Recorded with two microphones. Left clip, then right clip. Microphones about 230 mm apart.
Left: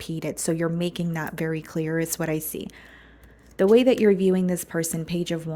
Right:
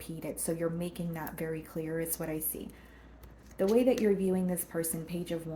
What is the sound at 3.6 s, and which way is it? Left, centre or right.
A woman's voice, left.